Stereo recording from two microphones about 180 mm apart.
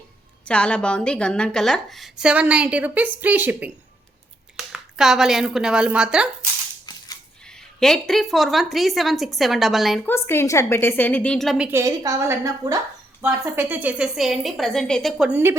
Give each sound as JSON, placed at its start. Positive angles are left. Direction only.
{"t": 0.4, "sound": "a woman's voice", "side_deg": 5}
{"t": 10.1, "sound": "a woman's voice", "side_deg": 15}
{"t": 11.8, "sound": "a woman's voice", "side_deg": -20}
{"t": 15.3, "sound": "a woman's voice", "side_deg": -10}